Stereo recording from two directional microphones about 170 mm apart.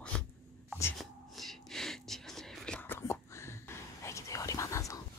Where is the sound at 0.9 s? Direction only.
Centre (ahead or behind).